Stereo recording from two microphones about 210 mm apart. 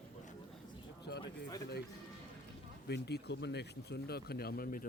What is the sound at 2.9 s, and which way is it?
Speech, 50° left (ahead or behind).